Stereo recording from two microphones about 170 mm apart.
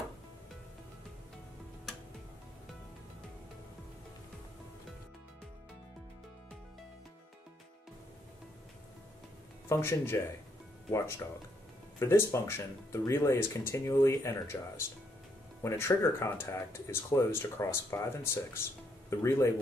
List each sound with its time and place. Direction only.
9.7 s speech: 15° left (ahead or behind)
15.6 s speech: 15° left (ahead or behind)